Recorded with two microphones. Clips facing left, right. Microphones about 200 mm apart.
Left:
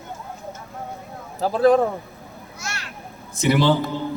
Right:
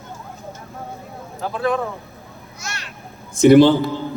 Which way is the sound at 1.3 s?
35° left (ahead or behind).